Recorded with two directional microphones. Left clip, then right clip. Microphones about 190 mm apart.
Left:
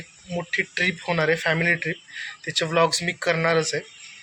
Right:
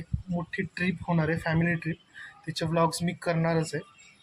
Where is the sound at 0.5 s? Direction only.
10° right (ahead or behind).